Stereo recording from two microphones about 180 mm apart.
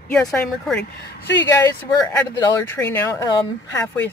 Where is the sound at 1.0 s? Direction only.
75° left (ahead or behind).